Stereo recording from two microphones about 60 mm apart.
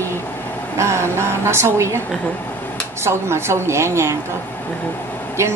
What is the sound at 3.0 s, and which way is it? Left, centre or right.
Speech, right.